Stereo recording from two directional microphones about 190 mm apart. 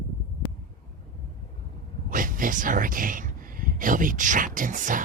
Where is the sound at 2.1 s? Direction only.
45° right (ahead or behind).